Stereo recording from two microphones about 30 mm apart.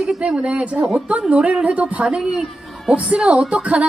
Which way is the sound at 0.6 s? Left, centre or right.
Right.